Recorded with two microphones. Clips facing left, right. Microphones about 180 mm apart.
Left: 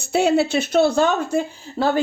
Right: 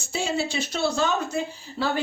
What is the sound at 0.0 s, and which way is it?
Speech, 60° left (ahead or behind).